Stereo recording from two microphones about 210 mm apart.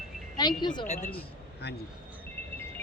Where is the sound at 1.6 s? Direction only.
50° left (ahead or behind).